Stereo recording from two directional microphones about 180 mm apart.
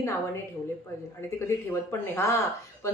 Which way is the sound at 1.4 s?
15° left (ahead or behind).